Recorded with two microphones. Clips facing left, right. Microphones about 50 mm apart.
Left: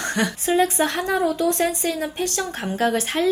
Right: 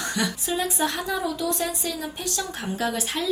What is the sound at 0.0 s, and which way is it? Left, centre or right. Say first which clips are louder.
Speech: left 4 dB; left.